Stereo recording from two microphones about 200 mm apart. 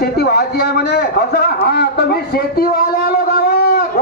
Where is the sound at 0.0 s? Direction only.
55° left (ahead or behind).